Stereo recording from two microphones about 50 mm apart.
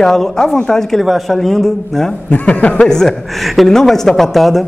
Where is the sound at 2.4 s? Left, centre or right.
Left.